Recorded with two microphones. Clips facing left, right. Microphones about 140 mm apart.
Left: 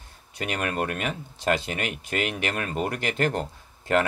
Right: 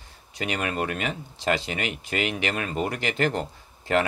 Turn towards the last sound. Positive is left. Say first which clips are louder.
# even
turn(degrees=50)  # may be behind; listen again after turning